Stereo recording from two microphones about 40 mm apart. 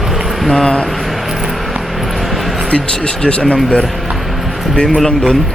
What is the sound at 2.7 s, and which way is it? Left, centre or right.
Speech, left.